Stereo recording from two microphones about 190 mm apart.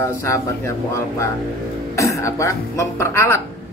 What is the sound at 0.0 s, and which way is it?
Speech, 15° left (ahead or behind).